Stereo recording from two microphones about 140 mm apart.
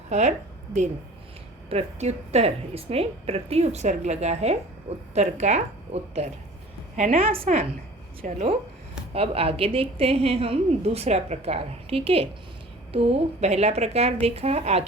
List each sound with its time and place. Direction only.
0.1 s a woman's voice: 55° right (ahead or behind)
6.9 s a woman's voice: 65° right (ahead or behind)
7.2 s a woman's voice: 40° right (ahead or behind)
8.2 s speech: 65° right (ahead or behind)
9.1 s a woman's voice: 45° right (ahead or behind)